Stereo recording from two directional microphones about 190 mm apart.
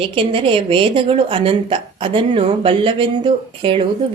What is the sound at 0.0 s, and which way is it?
Speech, 30° right (ahead or behind).